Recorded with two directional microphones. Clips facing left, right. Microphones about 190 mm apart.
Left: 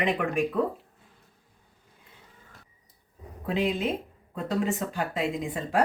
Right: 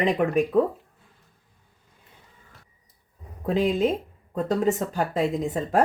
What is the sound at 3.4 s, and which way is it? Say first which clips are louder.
A woman's voice: right 5 dB; 40° right (ahead or behind).